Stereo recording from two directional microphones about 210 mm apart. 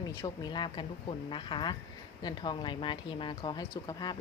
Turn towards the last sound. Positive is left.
turn(degrees=20)  # may be behind; listen again after turning